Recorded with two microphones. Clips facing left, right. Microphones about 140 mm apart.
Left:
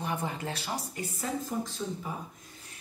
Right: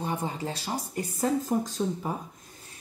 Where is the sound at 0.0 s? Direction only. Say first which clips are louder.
Right 2 dB; 25° right (ahead or behind).